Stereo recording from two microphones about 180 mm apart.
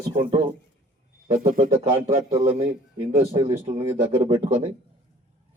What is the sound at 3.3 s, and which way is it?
Speech, 15° right (ahead or behind).